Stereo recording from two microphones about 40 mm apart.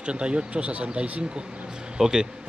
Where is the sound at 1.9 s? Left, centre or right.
Centre.